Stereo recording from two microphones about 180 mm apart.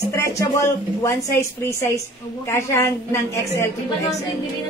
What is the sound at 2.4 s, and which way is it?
A woman's voice, 15° left (ahead or behind).